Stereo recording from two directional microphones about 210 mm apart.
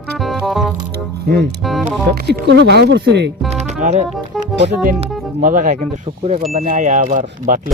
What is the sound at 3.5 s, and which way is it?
Music, 35° right (ahead or behind).